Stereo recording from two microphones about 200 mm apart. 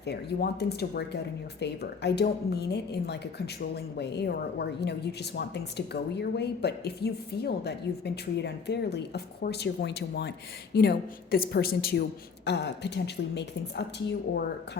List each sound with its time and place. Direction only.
0.0 s a woman's voice: 55° left (ahead or behind)